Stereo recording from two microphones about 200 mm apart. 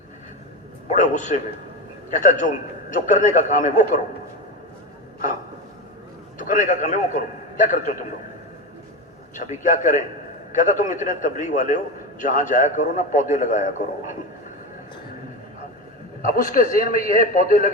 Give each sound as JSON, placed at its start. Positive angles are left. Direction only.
{"t": 0.9, "sound": "a man's voice", "side_deg": 35}
{"t": 6.4, "sound": "a man's voice", "side_deg": 40}
{"t": 9.3, "sound": "a man's voice", "side_deg": 40}
{"t": 16.2, "sound": "a man's voice", "side_deg": 40}